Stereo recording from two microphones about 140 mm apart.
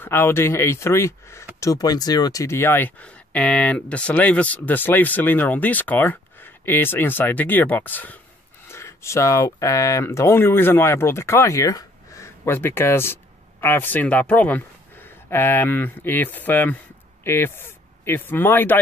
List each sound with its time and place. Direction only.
0.0 s speech: 15° left (ahead or behind)